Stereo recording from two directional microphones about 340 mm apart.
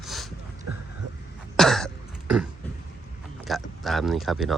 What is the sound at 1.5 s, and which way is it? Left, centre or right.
Cough, centre.